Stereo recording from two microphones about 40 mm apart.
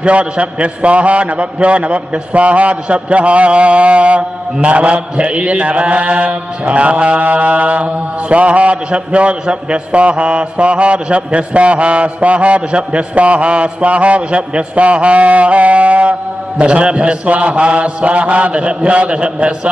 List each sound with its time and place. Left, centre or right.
0.0 s mantra: right